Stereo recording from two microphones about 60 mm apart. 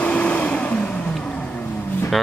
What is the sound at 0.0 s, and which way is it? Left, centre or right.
Vehicle, left.